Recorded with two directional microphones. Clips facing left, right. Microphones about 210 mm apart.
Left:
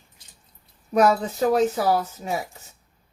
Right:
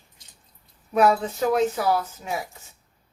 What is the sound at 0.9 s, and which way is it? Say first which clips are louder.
Speech: left 1 dB; 40° left (ahead or behind).